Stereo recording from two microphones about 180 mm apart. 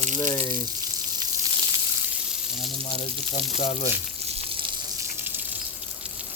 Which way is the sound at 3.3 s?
35° left (ahead or behind).